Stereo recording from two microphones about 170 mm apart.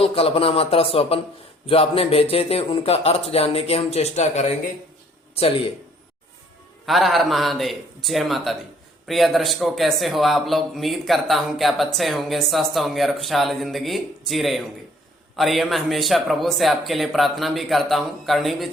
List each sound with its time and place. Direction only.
0.0 s a man's voice: 35° left (ahead or behind)
6.8 s a man's voice: centre (ahead or behind)